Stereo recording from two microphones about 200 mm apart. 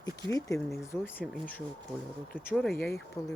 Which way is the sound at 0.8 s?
10° left (ahead or behind).